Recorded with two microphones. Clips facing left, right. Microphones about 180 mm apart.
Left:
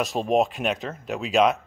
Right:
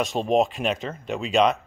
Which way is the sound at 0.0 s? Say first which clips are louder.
Right 1 dB; centre (ahead or behind).